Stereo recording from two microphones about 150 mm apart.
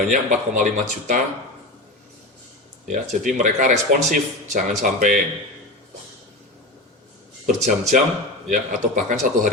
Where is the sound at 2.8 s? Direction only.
55° right (ahead or behind).